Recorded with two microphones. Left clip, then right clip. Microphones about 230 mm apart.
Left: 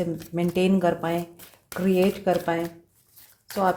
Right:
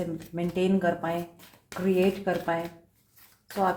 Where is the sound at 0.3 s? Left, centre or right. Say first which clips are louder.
Left 4 dB; left.